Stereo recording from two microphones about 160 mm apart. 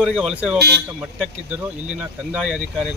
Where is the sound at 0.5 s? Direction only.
90° right.